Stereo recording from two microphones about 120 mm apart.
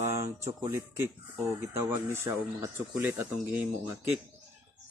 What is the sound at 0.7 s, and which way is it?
A man's voice, 20° right (ahead or behind).